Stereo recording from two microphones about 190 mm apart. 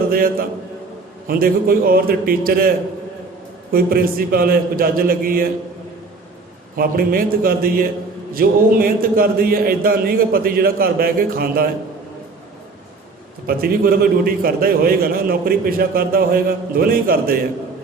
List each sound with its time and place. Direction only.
0.1 s a man's voice: 50° right (ahead or behind)
6.7 s a man's voice: 50° right (ahead or behind)
13.5 s a man's voice: 50° right (ahead or behind)